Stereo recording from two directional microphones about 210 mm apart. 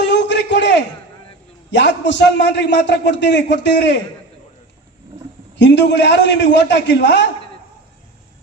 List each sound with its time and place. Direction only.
0.0 s a sound: 55° left (ahead or behind)
1.7 s a man's voice: 55° left (ahead or behind)
5.5 s a man's voice: 55° left (ahead or behind)